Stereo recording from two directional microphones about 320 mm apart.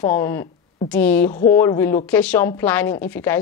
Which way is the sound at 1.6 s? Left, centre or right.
Centre.